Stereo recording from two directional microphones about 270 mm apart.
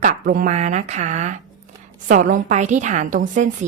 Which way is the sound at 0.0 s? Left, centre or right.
Right.